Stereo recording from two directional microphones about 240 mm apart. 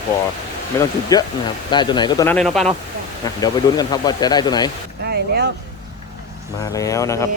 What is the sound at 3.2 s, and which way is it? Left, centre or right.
Speech, centre.